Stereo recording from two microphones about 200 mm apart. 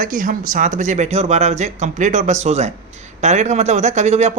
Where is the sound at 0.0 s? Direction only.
40° right (ahead or behind).